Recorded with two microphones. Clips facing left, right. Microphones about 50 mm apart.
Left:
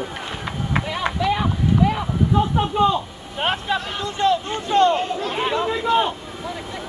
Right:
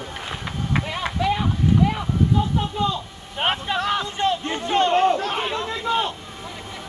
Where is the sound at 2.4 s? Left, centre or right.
Left.